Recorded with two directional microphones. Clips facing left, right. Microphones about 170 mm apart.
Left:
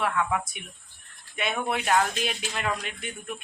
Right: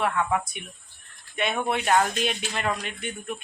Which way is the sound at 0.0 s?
Centre (ahead or behind).